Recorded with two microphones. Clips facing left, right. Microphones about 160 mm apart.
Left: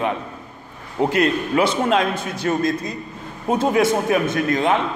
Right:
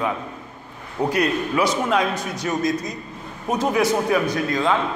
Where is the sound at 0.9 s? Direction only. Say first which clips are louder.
Left 2 dB; 25° left (ahead or behind).